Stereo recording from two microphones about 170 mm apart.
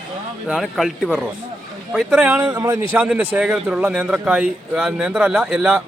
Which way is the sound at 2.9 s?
10° right (ahead or behind).